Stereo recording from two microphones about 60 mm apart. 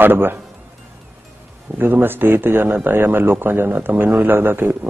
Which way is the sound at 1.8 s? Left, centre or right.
Right.